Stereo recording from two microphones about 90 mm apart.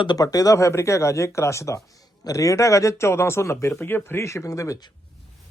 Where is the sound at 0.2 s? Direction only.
40° left (ahead or behind).